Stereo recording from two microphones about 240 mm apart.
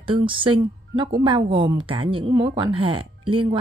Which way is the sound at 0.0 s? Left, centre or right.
Right.